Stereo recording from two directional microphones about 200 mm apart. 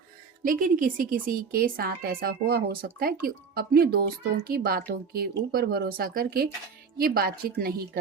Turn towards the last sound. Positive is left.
turn(degrees=-50)  # may be behind; listen again after turning